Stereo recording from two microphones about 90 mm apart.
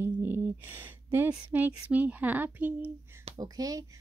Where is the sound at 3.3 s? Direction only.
45° right (ahead or behind).